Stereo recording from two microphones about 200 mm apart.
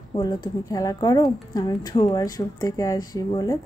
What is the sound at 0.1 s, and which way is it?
A woman's voice, 20° left (ahead or behind).